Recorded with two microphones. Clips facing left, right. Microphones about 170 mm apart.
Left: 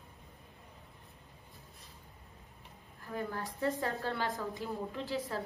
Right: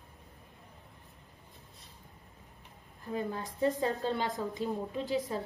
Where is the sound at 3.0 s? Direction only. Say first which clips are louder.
Right 3 dB; 20° right (ahead or behind).